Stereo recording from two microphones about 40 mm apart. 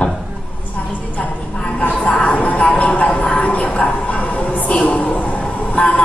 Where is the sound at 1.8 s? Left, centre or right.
Left.